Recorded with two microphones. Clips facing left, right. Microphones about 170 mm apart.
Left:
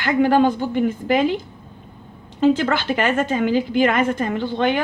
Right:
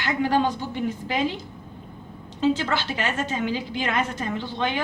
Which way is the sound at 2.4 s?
55° left (ahead or behind).